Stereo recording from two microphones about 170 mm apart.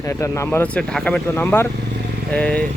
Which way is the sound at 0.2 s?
15° left (ahead or behind).